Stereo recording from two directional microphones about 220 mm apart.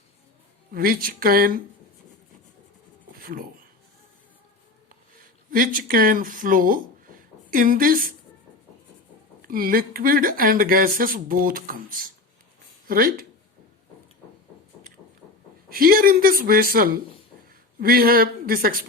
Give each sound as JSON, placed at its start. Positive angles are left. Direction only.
{"t": 0.7, "sound": "speech", "side_deg": -40}
{"t": 3.2, "sound": "a sound", "side_deg": -40}
{"t": 5.5, "sound": "speech", "side_deg": -40}
{"t": 9.5, "sound": "speech", "side_deg": -40}
{"t": 15.7, "sound": "speech", "side_deg": -40}